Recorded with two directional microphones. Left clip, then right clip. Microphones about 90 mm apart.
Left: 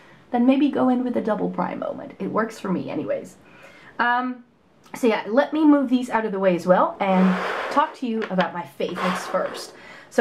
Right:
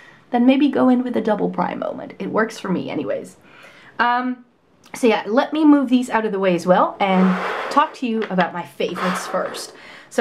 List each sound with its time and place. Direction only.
0.3 s speech: 40° right (ahead or behind)
7.2 s speech: centre (ahead or behind)
7.7 s speech: 40° right (ahead or behind)
8.9 s speech: 5° right (ahead or behind)
9.5 s speech: 40° right (ahead or behind)